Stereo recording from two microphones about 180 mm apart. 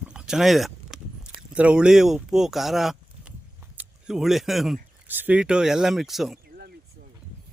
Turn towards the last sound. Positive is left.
turn(degrees=0)  # may be behind; listen again after turning